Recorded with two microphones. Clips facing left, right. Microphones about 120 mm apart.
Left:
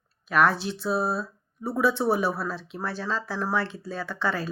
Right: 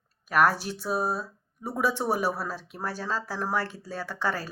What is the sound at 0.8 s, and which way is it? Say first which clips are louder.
Speech: left 2 dB; 10° right (ahead or behind).